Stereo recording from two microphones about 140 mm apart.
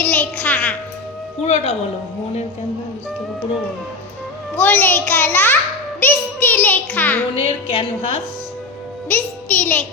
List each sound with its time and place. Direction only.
0.0 s music: 15° left (ahead or behind)
1.5 s speech: 50° left (ahead or behind)
4.5 s a child's voice: 15° left (ahead or behind)
6.0 s music: 15° left (ahead or behind)
7.3 s a woman's voice: 40° left (ahead or behind)
9.0 s a child's voice: 10° left (ahead or behind)